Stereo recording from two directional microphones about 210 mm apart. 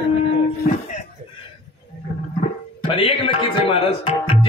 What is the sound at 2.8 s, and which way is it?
Speech, 25° left (ahead or behind).